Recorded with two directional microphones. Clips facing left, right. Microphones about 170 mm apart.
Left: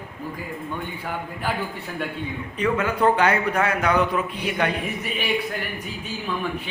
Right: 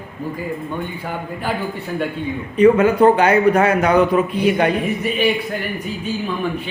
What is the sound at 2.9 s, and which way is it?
A man's voice, 30° right (ahead or behind).